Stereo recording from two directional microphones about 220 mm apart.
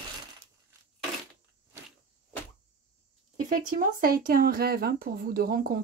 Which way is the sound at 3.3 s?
35° right (ahead or behind).